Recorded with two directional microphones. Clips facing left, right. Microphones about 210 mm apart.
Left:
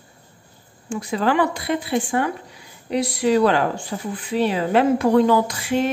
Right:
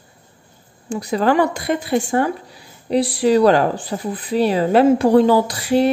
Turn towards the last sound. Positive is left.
turn(degrees=-35)  # may be behind; listen again after turning